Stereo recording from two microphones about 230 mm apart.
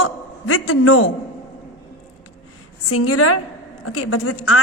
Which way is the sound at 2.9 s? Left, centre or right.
Left.